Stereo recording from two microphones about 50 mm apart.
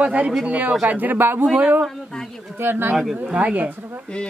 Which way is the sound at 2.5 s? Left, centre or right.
Right.